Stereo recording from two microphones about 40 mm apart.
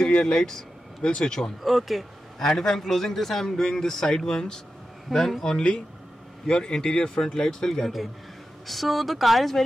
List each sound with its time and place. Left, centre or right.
0.0 s speech: left
1.6 s speech: centre
2.3 s a man's voice: centre
5.4 s a man's voice: centre
8.6 s speech: centre